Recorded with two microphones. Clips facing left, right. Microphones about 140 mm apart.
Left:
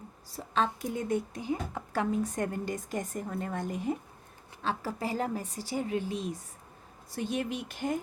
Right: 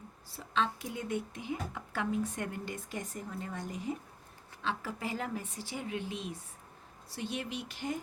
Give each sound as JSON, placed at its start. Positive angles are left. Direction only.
{"t": 0.3, "sound": "a woman's voice", "side_deg": 40}
{"t": 4.6, "sound": "a woman's voice", "side_deg": 40}